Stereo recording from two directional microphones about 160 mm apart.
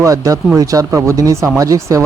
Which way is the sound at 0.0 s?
20° right (ahead or behind).